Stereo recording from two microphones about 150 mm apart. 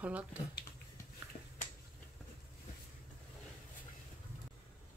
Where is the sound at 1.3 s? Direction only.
40° left (ahead or behind).